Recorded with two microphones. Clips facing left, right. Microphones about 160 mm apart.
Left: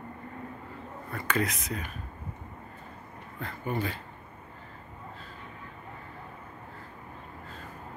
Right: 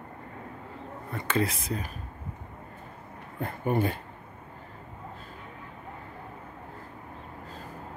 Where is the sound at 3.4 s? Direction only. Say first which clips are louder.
Right 5 dB; 50° right (ahead or behind).